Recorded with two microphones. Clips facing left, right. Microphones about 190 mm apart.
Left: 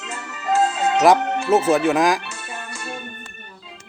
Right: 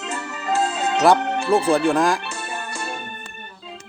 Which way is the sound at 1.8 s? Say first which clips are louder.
Even; 5° left (ahead or behind).